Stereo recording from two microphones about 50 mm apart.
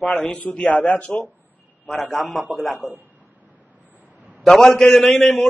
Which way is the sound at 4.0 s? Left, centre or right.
Right.